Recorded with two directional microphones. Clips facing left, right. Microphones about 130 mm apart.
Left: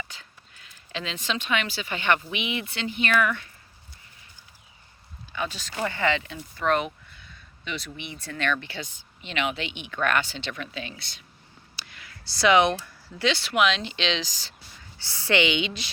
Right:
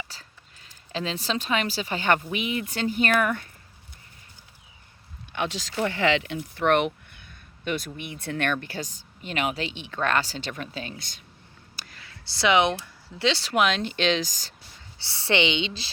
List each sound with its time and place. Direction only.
0.1 s speech: 35° right (ahead or behind)
5.3 s speech: 80° right; by 8.5 s 55° right (ahead or behind)
8.6 s speech: 45° right (ahead or behind)
11.8 s a sound: 35° right (ahead or behind)
12.3 s a woman's voice: 20° right (ahead or behind); by 14.5 s 45° right (ahead or behind)
14.9 s a woman's voice: 25° right (ahead or behind)